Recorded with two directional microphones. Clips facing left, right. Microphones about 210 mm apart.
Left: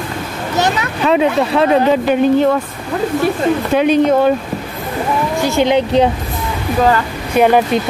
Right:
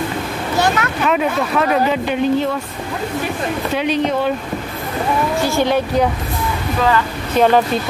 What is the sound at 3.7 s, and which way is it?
Speech, 50° left (ahead or behind).